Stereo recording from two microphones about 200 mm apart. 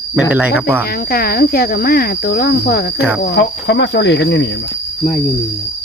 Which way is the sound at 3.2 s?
60° left (ahead or behind).